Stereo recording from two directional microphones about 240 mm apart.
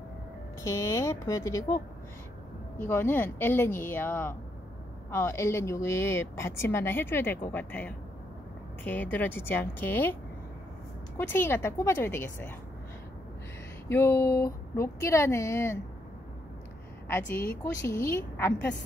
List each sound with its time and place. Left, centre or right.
0.6 s a woman's voice: centre
2.8 s a woman's voice: centre
11.1 s a woman's voice: centre
13.8 s a woman's voice: centre
17.8 s a woman's voice: centre